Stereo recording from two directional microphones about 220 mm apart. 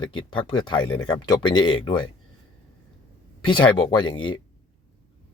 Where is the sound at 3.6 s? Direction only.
20° left (ahead or behind).